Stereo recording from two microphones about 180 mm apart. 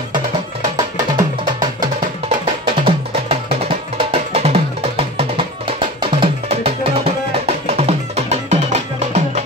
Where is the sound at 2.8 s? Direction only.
30° right (ahead or behind).